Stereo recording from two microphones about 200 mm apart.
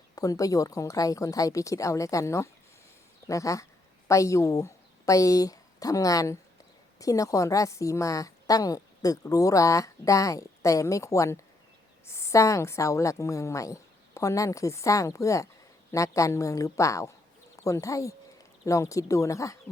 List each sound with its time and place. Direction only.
0.2 s a woman's voice: 15° left (ahead or behind)